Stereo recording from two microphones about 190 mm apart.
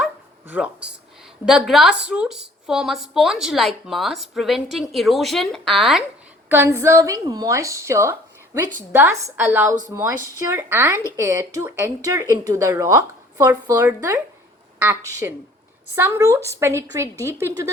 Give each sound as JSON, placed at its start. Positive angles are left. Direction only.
{"t": 0.5, "sound": "a woman's voice", "side_deg": -5}
{"t": 6.5, "sound": "a woman's voice", "side_deg": -15}